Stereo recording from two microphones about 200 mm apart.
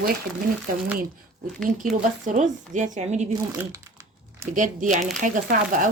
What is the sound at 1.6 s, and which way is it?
Speech, 40° right (ahead or behind).